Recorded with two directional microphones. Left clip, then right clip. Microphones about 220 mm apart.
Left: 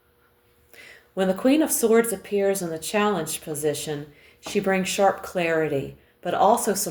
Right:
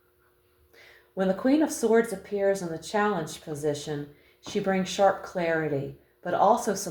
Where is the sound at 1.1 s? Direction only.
35° left (ahead or behind).